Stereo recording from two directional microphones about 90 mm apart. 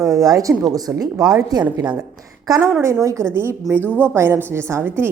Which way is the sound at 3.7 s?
20° left (ahead or behind).